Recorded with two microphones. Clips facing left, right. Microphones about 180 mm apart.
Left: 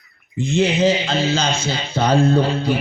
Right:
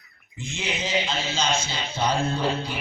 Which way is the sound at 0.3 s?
60° left (ahead or behind).